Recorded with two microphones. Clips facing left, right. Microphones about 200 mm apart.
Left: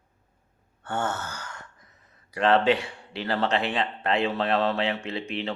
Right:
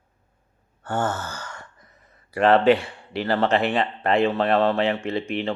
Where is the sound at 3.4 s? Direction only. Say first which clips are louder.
Right 4 dB; 55° right (ahead or behind).